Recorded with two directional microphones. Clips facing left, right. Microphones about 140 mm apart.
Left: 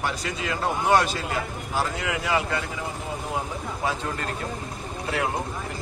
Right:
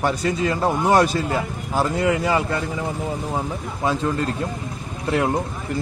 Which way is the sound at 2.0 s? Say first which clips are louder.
Right 6 dB; 40° right (ahead or behind).